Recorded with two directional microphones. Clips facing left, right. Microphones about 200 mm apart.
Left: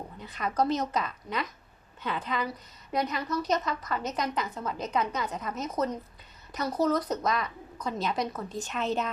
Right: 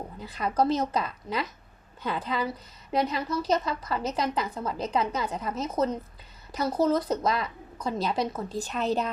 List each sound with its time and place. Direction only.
0.2 s a woman's voice: 35° right (ahead or behind)